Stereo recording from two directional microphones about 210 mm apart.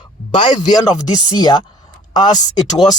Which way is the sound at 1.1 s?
20° left (ahead or behind).